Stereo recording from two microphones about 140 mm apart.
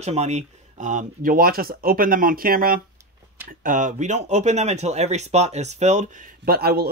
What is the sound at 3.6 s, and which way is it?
Speech, 65° right (ahead or behind).